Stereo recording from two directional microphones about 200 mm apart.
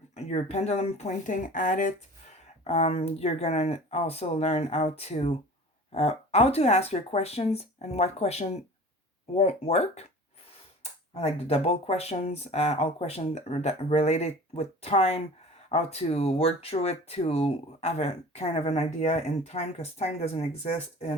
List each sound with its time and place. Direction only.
0.1 s speech: 35° left (ahead or behind)
11.1 s speech: 30° left (ahead or behind)